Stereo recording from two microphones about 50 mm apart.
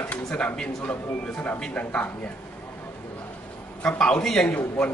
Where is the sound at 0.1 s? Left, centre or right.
Left.